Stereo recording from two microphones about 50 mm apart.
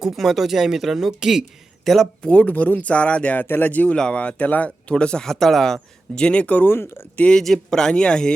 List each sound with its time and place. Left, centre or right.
0.0 s speech: centre
1.8 s speech: centre
2.2 s speech: left
3.3 s speech: left
3.9 s speech: centre
6.1 s speech: left
6.7 s speech: left
7.3 s speech: centre